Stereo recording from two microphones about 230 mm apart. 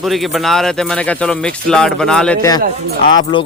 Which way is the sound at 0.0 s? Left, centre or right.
Centre.